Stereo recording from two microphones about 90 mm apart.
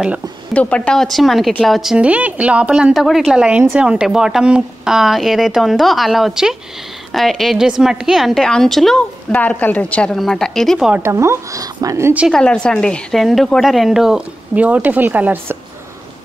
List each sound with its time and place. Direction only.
0.5 s speech: 15° left (ahead or behind); by 2.0 s 5° right (ahead or behind)
2.0 s a woman's voice: 15° right (ahead or behind); by 9.0 s 5° left (ahead or behind)
9.3 s a woman's voice: 15° left (ahead or behind)
10.1 s speech: 5° left (ahead or behind)
11.1 s speech: 30° right (ahead or behind)
12.3 s a woman's voice: 10° left (ahead or behind)
14.5 s speech: 15° right (ahead or behind)